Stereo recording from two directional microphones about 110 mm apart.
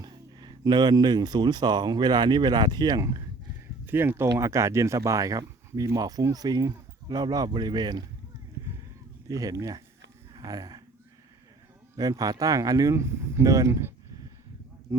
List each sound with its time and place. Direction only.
0.3 s speech: 40° right (ahead or behind)
3.8 s speech: 20° right (ahead or behind); by 8.0 s 40° right (ahead or behind)
9.2 s speech: 30° right (ahead or behind)
10.3 s a sound: 35° right (ahead or behind)
11.9 s speech: 35° right (ahead or behind)